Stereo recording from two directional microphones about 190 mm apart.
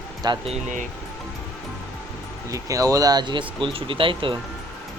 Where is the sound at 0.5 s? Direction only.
40° right (ahead or behind).